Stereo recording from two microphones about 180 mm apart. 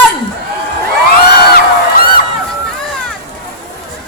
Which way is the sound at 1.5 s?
55° left (ahead or behind).